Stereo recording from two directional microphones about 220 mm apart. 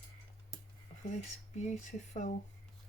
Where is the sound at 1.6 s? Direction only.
35° left (ahead or behind).